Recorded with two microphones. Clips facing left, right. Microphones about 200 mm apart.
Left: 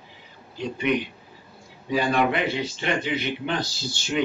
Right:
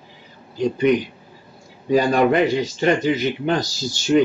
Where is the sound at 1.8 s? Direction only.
40° right (ahead or behind).